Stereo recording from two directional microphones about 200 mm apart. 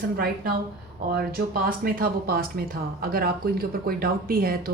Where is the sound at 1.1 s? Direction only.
50° right (ahead or behind).